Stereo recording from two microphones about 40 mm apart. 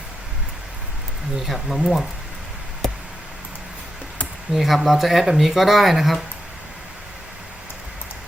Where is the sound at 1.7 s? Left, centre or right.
Centre.